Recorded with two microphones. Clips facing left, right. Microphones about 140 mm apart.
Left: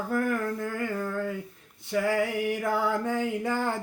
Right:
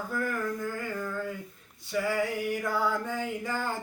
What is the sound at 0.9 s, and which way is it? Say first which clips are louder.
Speech: left 3 dB; 30° left (ahead or behind).